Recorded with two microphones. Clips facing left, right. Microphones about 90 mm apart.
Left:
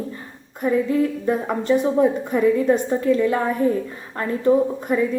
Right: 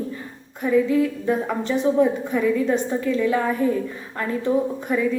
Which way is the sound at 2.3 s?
35° left (ahead or behind).